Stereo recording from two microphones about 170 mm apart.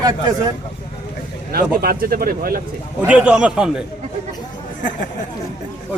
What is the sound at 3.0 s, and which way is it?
Speech, 5° right (ahead or behind).